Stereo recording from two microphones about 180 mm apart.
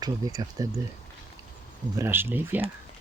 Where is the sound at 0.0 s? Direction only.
20° right (ahead or behind).